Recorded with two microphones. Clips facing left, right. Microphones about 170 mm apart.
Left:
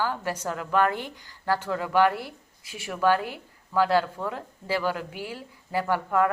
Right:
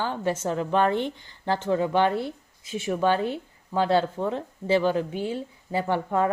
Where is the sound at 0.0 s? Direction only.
25° right (ahead or behind).